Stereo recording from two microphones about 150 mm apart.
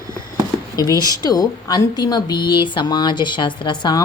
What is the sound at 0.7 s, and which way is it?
Speech, 25° left (ahead or behind).